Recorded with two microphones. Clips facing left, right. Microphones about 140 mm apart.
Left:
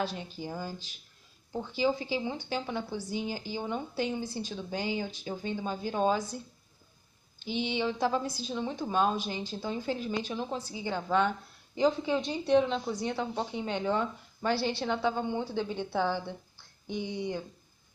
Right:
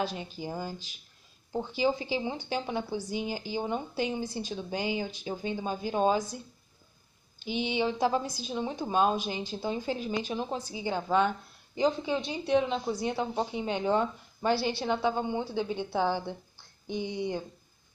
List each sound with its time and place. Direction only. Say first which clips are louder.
0.0 s a woman's voice: right 1 dB; 15° right (ahead or behind)
7.3 s a woman's voice: right 2 dB; 15° right (ahead or behind)
13.8 s speech: right 5 dB; 20° right (ahead or behind)
14.5 s a woman's voice: right 2 dB; 5° right (ahead or behind)